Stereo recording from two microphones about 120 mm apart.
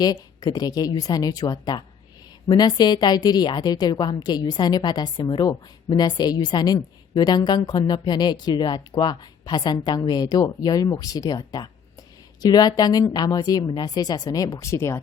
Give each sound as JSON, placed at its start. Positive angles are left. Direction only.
{"t": 0.0, "sound": "a woman's voice", "side_deg": 35}